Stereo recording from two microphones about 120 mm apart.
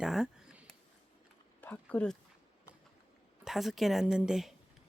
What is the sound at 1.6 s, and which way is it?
Speech, 15° left (ahead or behind).